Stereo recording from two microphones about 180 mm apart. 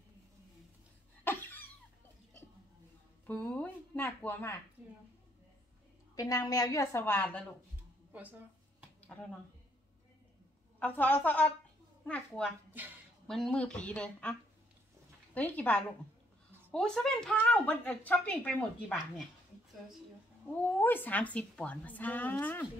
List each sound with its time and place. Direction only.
1.2 s cough: 10° left (ahead or behind)
3.3 s speech: 5° left (ahead or behind)
6.1 s speech: 20° left (ahead or behind)
8.1 s speech: 10° right (ahead or behind)
10.8 s speech: 10° left (ahead or behind)
15.3 s speech: 10° left (ahead or behind)
20.7 s speech: 10° left (ahead or behind)